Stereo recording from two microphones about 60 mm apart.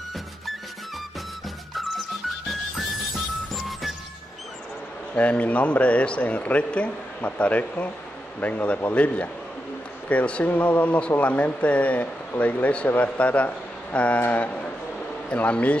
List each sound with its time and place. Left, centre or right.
3.5 s music: centre
5.1 s a man's voice: left